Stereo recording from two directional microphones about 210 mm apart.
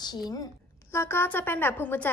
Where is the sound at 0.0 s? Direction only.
20° left (ahead or behind).